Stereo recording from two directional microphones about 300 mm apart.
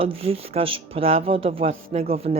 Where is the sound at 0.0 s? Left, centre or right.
Centre.